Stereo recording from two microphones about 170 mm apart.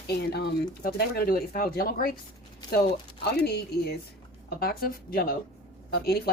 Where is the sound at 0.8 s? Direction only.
60° left (ahead or behind).